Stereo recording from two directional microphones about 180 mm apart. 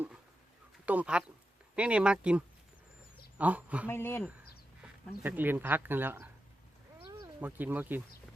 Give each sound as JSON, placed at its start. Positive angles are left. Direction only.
{"t": 0.9, "sound": "speech", "side_deg": -5}
{"t": 3.8, "sound": "speech", "side_deg": 10}
{"t": 4.8, "sound": "speech", "side_deg": -10}
{"t": 7.3, "sound": "speech", "side_deg": -10}